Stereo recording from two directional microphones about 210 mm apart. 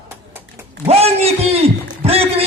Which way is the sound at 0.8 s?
30° right (ahead or behind).